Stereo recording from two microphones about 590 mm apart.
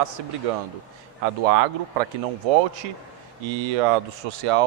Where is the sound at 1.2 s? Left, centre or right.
Right.